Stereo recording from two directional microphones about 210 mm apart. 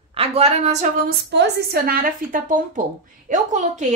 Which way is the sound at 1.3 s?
50° right (ahead or behind).